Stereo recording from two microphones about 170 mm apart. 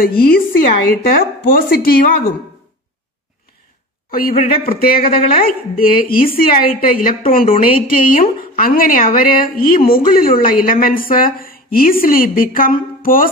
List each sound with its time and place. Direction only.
0.0 s a woman's voice: 60° left (ahead or behind)
4.1 s a woman's voice: 60° left (ahead or behind)
13.0 s music: 55° left (ahead or behind)